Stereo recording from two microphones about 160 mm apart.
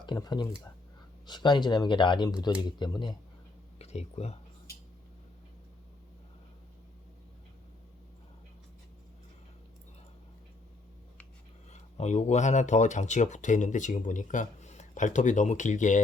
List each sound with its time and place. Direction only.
0.0 s speech: 25° left (ahead or behind)
3.8 s speech: 40° left (ahead or behind)
11.7 s speech: 45° left (ahead or behind)